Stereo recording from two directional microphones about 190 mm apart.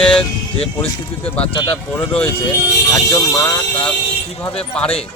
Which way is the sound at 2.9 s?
15° left (ahead or behind).